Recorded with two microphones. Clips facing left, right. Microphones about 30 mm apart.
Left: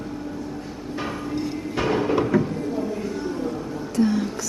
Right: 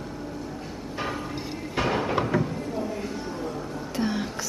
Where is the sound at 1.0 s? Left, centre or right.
Centre.